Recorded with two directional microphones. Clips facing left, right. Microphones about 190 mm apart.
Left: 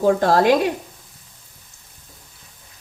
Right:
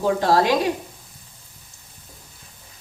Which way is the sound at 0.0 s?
50° left (ahead or behind).